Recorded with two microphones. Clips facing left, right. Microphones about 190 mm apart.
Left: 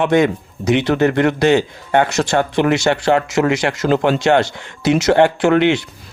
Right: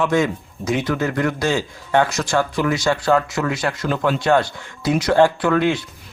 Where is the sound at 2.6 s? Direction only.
70° left (ahead or behind).